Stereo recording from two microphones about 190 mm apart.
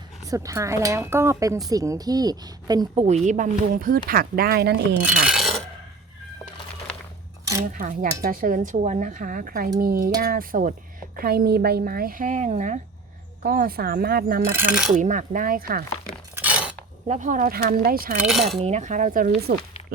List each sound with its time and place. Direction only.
0.3 s speech: 15° right (ahead or behind)
3.1 s speech: 40° right (ahead or behind); by 4.9 s 60° right (ahead or behind)
5.2 s a sound: centre (ahead or behind)
7.7 s speech: 45° right (ahead or behind)
13.4 s speech: 50° right (ahead or behind)
14.5 s speech: 10° right (ahead or behind)
14.9 s speech: 40° right (ahead or behind)
16.3 s a sound: 10° right (ahead or behind)
17.1 s speech: 40° right (ahead or behind)
18.2 s speech: centre (ahead or behind)
18.6 s cutlery: 40° right (ahead or behind)
19.5 s speech: 45° right (ahead or behind)